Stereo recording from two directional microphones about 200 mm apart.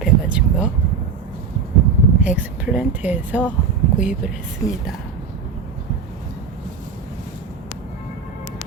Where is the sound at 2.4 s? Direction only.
5° right (ahead or behind).